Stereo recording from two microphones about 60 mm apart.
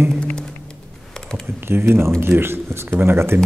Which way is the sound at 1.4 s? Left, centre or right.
Right.